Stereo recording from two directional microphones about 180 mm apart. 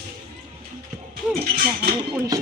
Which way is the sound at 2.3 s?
20° right (ahead or behind).